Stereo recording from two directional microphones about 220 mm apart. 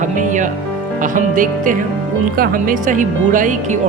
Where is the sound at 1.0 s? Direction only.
35° right (ahead or behind).